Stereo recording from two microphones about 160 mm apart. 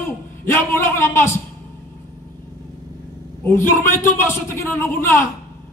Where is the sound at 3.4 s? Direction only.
15° left (ahead or behind).